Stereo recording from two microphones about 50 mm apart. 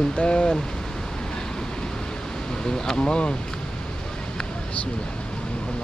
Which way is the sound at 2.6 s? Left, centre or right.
Centre.